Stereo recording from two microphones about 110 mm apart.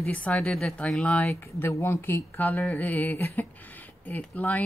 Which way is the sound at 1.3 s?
25° left (ahead or behind).